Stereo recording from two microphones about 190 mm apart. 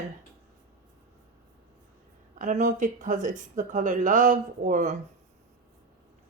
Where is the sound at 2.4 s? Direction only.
40° right (ahead or behind).